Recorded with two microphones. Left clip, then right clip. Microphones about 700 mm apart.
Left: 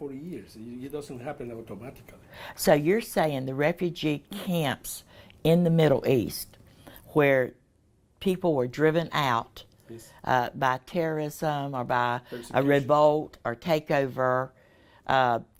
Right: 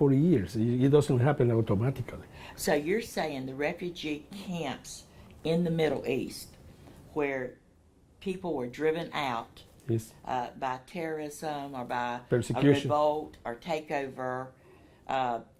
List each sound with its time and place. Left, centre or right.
0.0 s speech: right
2.3 s speech: left
9.9 s speech: right
10.2 s speech: left